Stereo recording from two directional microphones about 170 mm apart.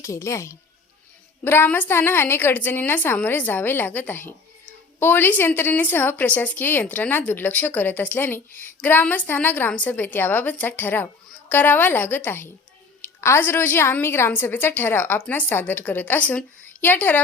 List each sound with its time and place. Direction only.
0.0 s a woman's voice: 20° left (ahead or behind)